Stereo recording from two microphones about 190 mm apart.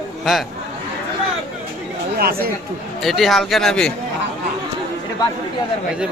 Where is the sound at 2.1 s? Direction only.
55° right (ahead or behind).